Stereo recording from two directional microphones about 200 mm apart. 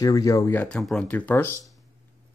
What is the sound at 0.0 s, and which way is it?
Speech, 15° left (ahead or behind).